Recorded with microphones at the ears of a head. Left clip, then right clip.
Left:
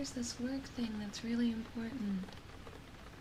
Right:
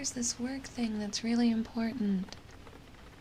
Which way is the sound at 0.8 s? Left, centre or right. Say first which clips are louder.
Right 7 dB; right.